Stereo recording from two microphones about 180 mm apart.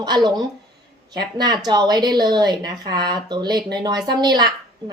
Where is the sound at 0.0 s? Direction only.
25° right (ahead or behind).